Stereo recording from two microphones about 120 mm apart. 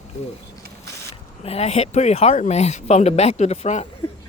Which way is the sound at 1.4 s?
60° left (ahead or behind).